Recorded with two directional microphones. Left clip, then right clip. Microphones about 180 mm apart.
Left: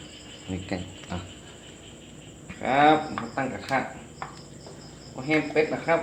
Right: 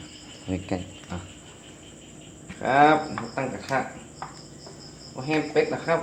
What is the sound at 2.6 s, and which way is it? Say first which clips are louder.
Speech: right 1 dB; 35° right (ahead or behind).